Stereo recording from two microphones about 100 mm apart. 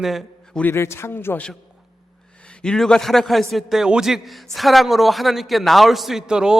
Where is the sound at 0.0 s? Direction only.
Centre (ahead or behind).